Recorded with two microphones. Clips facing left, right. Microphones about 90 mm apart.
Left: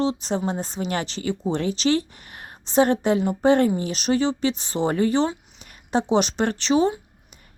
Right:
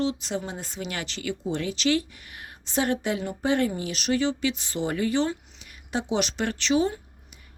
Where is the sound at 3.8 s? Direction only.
25° left (ahead or behind).